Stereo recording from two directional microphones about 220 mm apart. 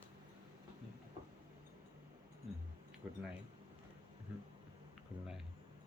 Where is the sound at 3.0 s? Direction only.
5° right (ahead or behind).